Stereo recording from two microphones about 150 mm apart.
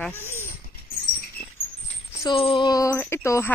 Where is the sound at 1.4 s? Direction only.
90° left.